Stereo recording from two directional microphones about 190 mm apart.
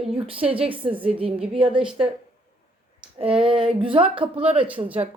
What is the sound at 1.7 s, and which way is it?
Speech, 5° right (ahead or behind).